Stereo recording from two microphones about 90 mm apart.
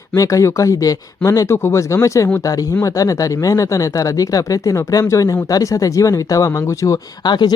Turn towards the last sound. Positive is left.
turn(degrees=55)  # may be behind; listen again after turning